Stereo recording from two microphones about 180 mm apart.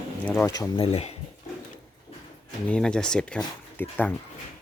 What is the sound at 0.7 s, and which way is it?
Speech, 35° left (ahead or behind).